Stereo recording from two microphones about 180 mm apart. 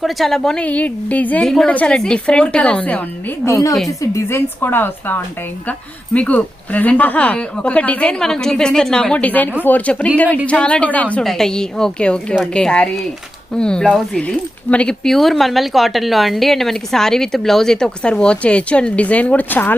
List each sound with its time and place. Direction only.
0.0 s speech: centre (ahead or behind)
3.4 s speech: 15° left (ahead or behind)